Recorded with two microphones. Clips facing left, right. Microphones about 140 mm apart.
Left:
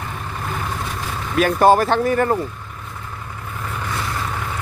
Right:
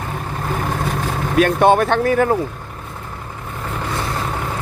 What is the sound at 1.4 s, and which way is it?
Speech, centre (ahead or behind).